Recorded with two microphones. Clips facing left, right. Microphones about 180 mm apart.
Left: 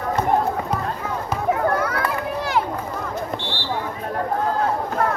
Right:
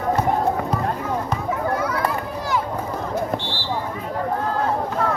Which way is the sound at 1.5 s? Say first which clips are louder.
Left 4 dB; 60° left (ahead or behind).